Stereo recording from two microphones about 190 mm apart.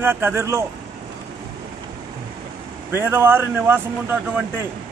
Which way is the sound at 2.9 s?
10° right (ahead or behind).